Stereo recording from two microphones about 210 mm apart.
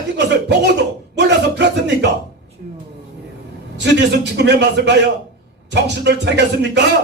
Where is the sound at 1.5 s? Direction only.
55° right (ahead or behind).